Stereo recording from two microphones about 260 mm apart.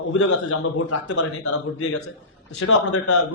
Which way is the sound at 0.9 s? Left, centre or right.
Left.